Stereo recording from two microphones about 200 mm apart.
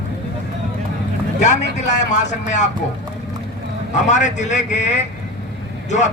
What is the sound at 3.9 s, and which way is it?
A man's voice, 35° left (ahead or behind).